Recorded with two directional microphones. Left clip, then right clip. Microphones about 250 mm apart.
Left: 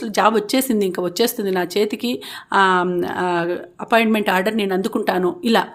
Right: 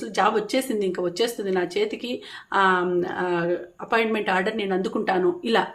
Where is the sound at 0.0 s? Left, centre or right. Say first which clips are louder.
Left 5 dB; left.